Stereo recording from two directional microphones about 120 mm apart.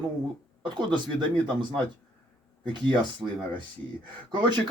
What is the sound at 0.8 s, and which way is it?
Speech, 40° right (ahead or behind).